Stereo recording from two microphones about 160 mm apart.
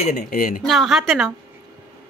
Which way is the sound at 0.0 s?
50° left (ahead or behind).